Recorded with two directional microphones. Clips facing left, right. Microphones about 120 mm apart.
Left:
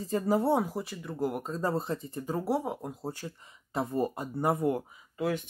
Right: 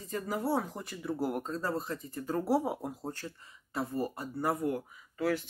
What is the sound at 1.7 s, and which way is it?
Speech, 25° left (ahead or behind).